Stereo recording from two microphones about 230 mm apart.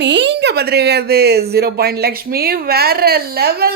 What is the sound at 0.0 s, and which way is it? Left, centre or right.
A woman's voice, right.